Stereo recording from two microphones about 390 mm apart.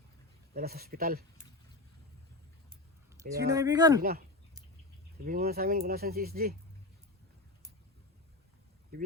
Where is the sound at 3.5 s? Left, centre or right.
Centre.